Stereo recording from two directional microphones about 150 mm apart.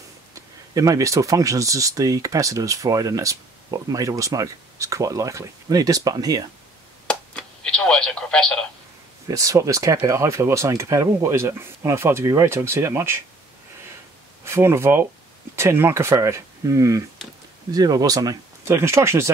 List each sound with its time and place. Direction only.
0.3 s speech: 20° right (ahead or behind)
7.1 s telephone: 5° left (ahead or behind)
9.3 s speech: 20° right (ahead or behind)
14.4 s speech: 15° right (ahead or behind)